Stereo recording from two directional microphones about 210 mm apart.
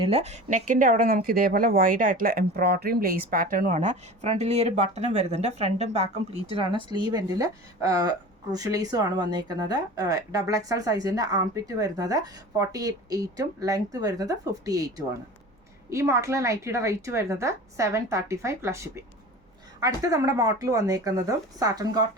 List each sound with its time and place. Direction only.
0.0 s speech: 30° right (ahead or behind)